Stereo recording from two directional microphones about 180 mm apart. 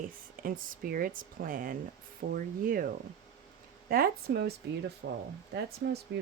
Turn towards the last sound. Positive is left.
turn(degrees=-70)  # may be behind; listen again after turning